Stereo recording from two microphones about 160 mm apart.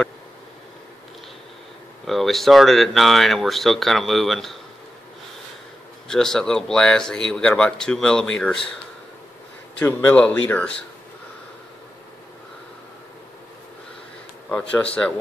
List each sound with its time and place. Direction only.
2.0 s speech: centre (ahead or behind)
6.0 s speech: 5° left (ahead or behind)
9.8 s speech: 10° left (ahead or behind)
14.5 s speech: 5° left (ahead or behind)